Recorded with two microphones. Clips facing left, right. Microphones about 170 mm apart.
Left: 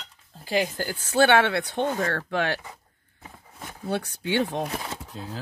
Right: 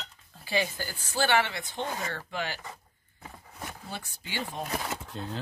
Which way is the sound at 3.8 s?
70° left (ahead or behind).